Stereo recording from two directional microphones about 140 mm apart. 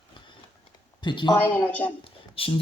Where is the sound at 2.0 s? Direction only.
40° left (ahead or behind).